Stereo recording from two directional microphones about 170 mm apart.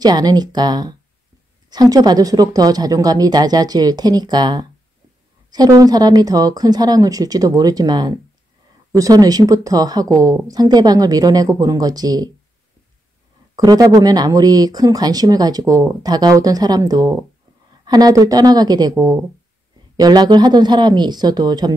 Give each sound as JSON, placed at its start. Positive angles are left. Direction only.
{"t": 0.0, "sound": "speech", "side_deg": -25}
{"t": 13.6, "sound": "speech", "side_deg": -20}